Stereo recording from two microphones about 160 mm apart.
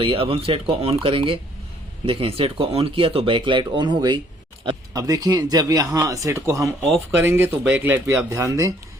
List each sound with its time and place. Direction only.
0.0 s speech: 35° right (ahead or behind); by 8.7 s 20° right (ahead or behind)